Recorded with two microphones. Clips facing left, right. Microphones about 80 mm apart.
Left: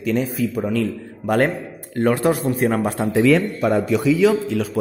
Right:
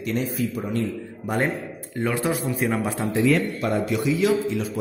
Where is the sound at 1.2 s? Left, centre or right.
Left.